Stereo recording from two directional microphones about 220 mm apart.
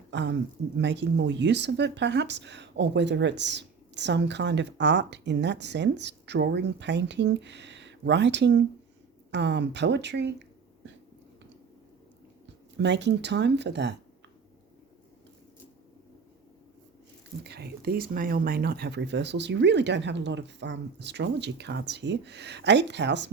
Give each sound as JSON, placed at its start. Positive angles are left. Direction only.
{"t": 0.1, "sound": "speech", "side_deg": -50}
{"t": 12.7, "sound": "speech", "side_deg": -55}
{"t": 17.4, "sound": "speech", "side_deg": -50}